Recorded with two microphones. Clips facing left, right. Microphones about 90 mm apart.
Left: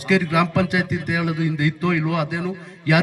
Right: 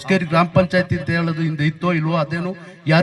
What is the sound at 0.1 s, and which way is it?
Speech, 25° right (ahead or behind).